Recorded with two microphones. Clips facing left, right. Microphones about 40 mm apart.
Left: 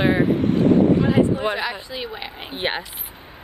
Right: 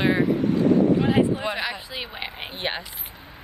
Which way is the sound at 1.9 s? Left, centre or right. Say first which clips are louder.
Left 2 dB; centre.